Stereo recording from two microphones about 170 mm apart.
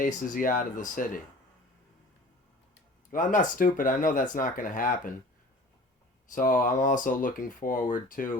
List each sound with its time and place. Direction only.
0.0 s speech: 55° left (ahead or behind)
3.1 s speech: 50° left (ahead or behind)
6.3 s speech: 50° left (ahead or behind)